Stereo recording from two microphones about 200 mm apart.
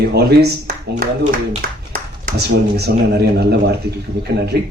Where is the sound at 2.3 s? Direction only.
55° right (ahead or behind).